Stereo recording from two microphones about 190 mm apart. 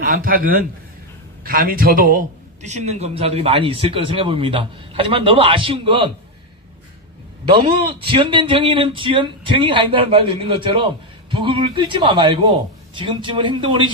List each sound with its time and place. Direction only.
0.0 s a man's voice: 50° right (ahead or behind); by 6.1 s 30° right (ahead or behind)
8.0 s a man's voice: 25° right (ahead or behind)